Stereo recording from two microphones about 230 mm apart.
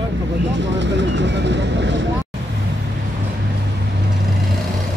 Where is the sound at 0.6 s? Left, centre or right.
Right.